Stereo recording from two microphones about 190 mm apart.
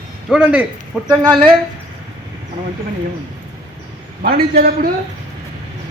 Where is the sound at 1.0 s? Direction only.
20° right (ahead or behind).